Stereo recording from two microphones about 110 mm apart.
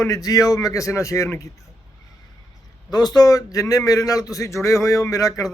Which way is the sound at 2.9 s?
35° left (ahead or behind).